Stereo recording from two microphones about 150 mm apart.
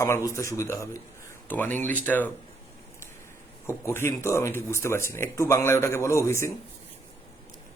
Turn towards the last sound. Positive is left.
turn(degrees=20)  # may be behind; listen again after turning